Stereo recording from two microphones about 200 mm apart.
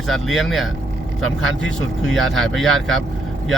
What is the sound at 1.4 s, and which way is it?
Speech, 75° right (ahead or behind).